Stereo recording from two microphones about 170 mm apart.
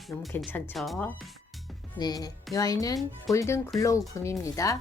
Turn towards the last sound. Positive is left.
turn(degrees=20)  # may be behind; listen again after turning